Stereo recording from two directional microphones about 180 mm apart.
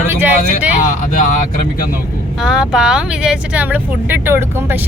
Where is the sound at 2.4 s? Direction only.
5° right (ahead or behind).